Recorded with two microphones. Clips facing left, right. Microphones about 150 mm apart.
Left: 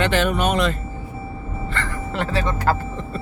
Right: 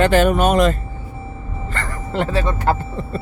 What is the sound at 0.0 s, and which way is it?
Speech, 45° right (ahead or behind).